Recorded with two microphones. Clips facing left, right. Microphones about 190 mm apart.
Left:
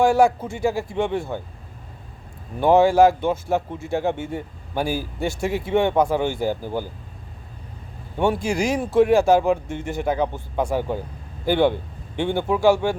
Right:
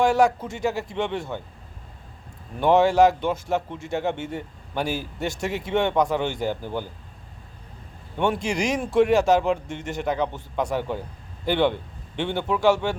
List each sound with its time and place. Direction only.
0.0 s speech: 10° left (ahead or behind)
2.6 s speech: 10° left (ahead or behind)
8.5 s a man's voice: 5° left (ahead or behind)